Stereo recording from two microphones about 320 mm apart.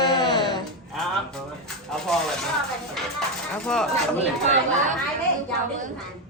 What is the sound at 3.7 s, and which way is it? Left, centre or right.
Speech, centre.